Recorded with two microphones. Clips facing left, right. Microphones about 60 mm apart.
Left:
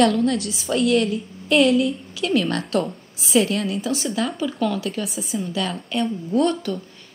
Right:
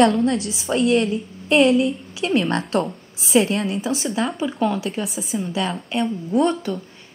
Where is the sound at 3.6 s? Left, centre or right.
Centre.